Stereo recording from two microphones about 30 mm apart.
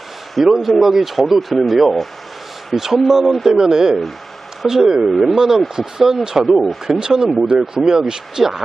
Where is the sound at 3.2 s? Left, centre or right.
Centre.